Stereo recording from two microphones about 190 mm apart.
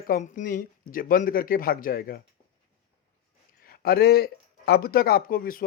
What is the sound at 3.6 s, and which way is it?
Speech, 50° left (ahead or behind).